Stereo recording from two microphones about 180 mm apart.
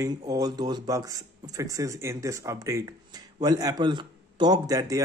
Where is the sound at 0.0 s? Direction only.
20° right (ahead or behind).